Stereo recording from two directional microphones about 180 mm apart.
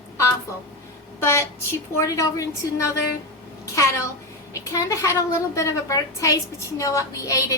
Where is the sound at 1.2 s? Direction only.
15° left (ahead or behind).